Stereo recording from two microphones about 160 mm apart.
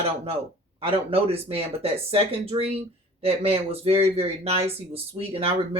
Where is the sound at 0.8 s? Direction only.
35° right (ahead or behind).